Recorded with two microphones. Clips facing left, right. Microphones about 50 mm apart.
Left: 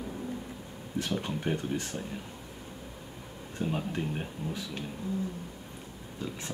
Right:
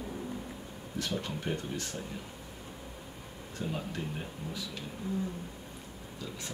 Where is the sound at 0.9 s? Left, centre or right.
Left.